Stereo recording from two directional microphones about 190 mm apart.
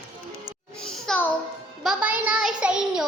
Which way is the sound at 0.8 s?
5° left (ahead or behind).